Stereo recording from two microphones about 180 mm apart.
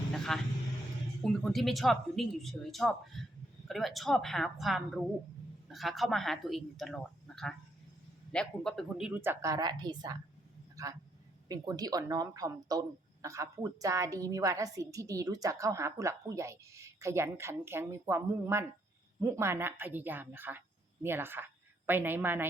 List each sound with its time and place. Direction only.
0.3 s a woman's voice: 5° left (ahead or behind)